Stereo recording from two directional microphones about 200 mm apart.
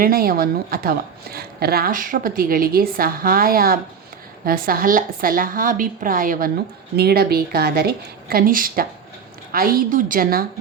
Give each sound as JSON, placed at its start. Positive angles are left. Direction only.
{"t": 0.0, "sound": "a woman's voice", "side_deg": -45}